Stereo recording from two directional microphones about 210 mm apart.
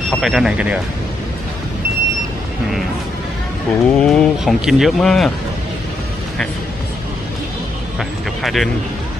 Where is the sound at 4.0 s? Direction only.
Centre (ahead or behind).